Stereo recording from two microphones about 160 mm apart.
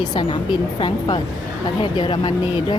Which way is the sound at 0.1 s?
30° left (ahead or behind).